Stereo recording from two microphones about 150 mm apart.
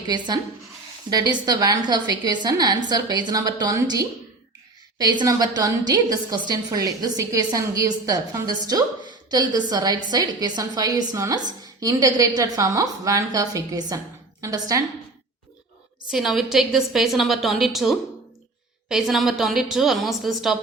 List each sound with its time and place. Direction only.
0.1 s a woman's voice: 25° right (ahead or behind)
5.2 s a woman's voice: 25° right (ahead or behind)
16.1 s a woman's voice: centre (ahead or behind)